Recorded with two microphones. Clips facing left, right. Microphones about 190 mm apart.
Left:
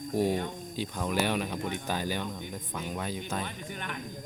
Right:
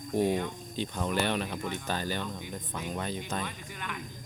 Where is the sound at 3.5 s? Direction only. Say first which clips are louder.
Left 2 dB; 35° left (ahead or behind).